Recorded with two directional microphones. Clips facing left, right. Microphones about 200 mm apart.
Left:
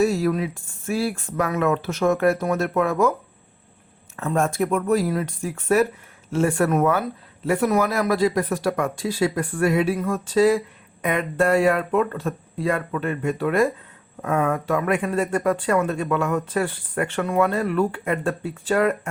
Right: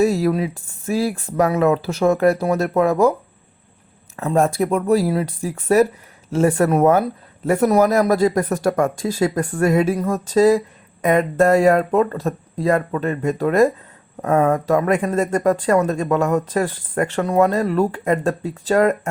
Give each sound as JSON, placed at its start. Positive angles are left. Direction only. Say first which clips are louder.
{"t": 0.0, "sound": "speech", "louder": "right 3 dB", "side_deg": -35}
{"t": 4.2, "sound": "speech", "louder": "right 4 dB", "side_deg": -35}